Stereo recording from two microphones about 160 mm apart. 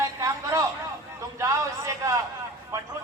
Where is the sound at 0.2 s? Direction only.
20° right (ahead or behind).